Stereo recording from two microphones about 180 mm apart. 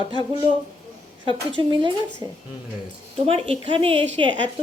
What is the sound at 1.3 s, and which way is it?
Speech, 25° right (ahead or behind).